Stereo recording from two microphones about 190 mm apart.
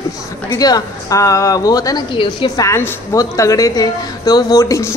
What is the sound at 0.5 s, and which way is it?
A woman's voice, 20° left (ahead or behind).